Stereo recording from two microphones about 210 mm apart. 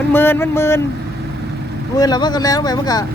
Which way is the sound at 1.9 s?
20° left (ahead or behind).